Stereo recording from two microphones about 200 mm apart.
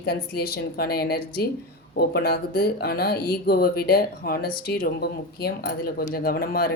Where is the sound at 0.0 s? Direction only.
50° left (ahead or behind).